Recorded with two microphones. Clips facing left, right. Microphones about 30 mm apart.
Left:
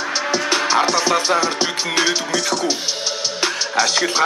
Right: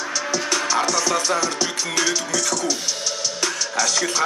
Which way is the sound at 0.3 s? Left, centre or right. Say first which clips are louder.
Left 4 dB; left.